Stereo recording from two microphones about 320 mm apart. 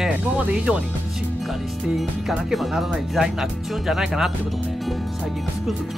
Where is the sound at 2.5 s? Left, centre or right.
Centre.